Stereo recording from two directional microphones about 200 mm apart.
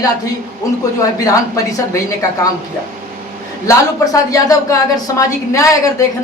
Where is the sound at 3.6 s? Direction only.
15° left (ahead or behind).